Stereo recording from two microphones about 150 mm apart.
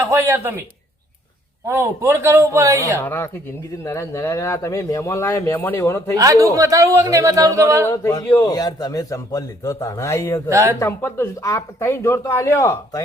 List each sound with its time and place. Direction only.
0.1 s speech: 15° right (ahead or behind)
1.6 s speech: 15° right (ahead or behind)
3.0 s a man's voice: 15° left (ahead or behind)
6.1 s speech: 25° right (ahead or behind)
7.9 s a man's voice: 15° left (ahead or behind)
10.5 s speech: 20° right (ahead or behind)
10.8 s speech: 15° left (ahead or behind)